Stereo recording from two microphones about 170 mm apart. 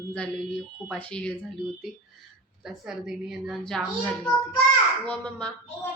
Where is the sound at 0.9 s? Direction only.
5° left (ahead or behind).